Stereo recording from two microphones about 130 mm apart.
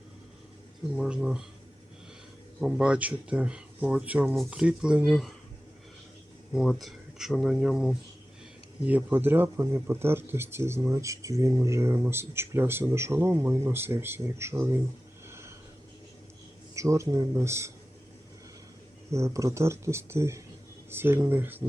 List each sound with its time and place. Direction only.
0.9 s speech: 5° right (ahead or behind)
2.6 s speech: 5° right (ahead or behind)
6.5 s speech: centre (ahead or behind); by 14.8 s 20° right (ahead or behind)
15.3 s a sound: 20° right (ahead or behind)
16.7 s speech: 25° right (ahead or behind)
19.1 s speech: 25° right (ahead or behind)